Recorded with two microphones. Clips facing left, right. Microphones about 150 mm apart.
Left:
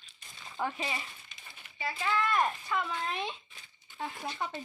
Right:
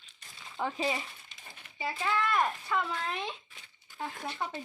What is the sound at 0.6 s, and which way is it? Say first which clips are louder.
A child's voice: right 3 dB; 5° right (ahead or behind).